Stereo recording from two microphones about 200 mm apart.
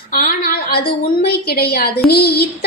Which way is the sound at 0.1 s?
45° left (ahead or behind).